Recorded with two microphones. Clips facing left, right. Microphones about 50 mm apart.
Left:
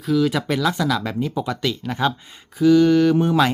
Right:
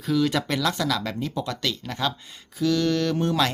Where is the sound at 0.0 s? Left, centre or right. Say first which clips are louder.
Left 3 dB; centre.